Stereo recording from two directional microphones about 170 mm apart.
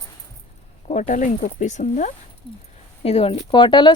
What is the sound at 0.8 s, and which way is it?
Speech, 45° left (ahead or behind).